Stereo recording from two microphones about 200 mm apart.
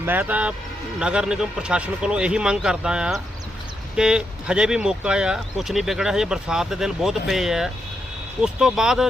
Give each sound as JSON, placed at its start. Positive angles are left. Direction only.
{"t": 0.0, "sound": "speech", "side_deg": -10}